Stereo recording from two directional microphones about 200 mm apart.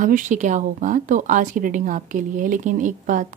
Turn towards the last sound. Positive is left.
turn(degrees=-40)  # may be behind; listen again after turning